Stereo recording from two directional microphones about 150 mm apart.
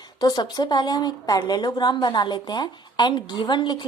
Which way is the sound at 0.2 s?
25° left (ahead or behind).